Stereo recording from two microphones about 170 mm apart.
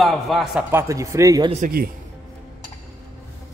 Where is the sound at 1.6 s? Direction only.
60° right (ahead or behind).